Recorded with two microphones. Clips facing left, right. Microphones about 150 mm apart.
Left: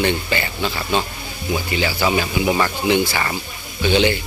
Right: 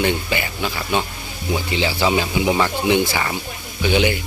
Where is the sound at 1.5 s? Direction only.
20° right (ahead or behind).